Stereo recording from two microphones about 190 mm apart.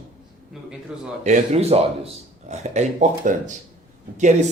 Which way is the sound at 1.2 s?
35° right (ahead or behind).